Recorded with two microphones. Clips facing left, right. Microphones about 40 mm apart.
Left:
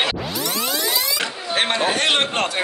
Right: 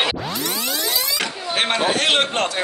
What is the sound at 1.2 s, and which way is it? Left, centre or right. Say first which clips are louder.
Speech: even; centre.